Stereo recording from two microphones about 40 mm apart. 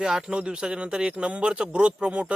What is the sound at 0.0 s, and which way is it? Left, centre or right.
Speech, centre.